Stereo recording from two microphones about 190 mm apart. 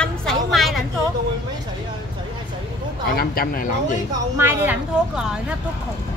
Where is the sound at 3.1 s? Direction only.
50° left (ahead or behind).